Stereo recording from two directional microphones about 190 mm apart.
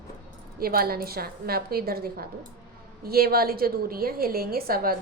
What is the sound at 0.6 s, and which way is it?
A woman's voice, 50° right (ahead or behind).